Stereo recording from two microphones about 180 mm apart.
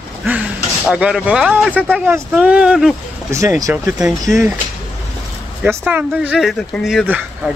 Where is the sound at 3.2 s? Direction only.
15° right (ahead or behind).